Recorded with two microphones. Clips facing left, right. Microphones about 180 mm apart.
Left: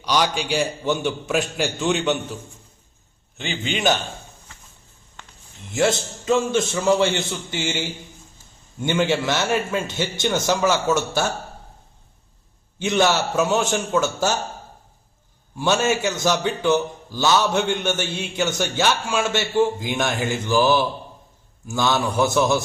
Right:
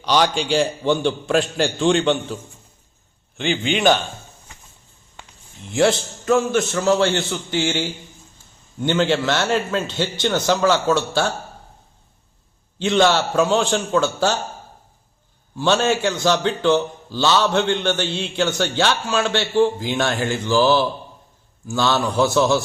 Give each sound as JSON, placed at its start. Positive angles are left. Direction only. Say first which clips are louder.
{"t": 0.1, "sound": "a man's voice", "louder": "right 3 dB", "side_deg": 10}
{"t": 3.3, "sound": "a man's voice", "louder": "right 6 dB", "side_deg": -55}
{"t": 6.7, "sound": "a man's voice", "louder": "right 1 dB", "side_deg": 10}
{"t": 12.9, "sound": "a man's voice", "louder": "right 3 dB", "side_deg": 10}
{"t": 15.5, "sound": "a man's voice", "louder": "right 2 dB", "side_deg": 10}